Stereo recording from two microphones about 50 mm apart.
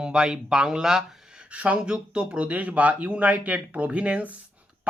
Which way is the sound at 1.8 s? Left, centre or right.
Centre.